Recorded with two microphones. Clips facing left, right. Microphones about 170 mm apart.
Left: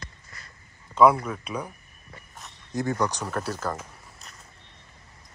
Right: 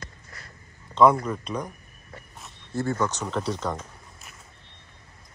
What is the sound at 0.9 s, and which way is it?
Speech, 10° left (ahead or behind).